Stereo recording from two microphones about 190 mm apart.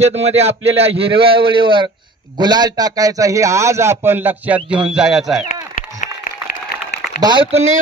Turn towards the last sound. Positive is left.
turn(degrees=-30)  # may be behind; listen again after turning